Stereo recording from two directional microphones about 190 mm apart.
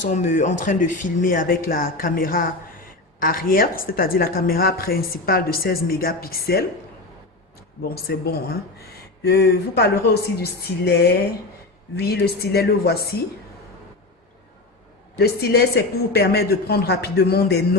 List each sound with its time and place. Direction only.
0.1 s a woman's voice: 40° left (ahead or behind); by 6.7 s 55° left (ahead or behind)
7.9 s speech: 55° left (ahead or behind)
15.2 s speech: 55° left (ahead or behind)